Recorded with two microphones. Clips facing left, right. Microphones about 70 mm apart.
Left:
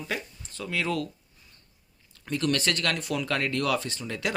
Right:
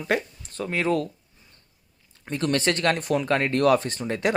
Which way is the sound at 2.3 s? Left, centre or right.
Right.